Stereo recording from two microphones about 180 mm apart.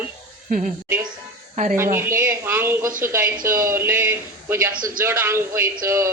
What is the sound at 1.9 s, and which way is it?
Speech, 15° right (ahead or behind).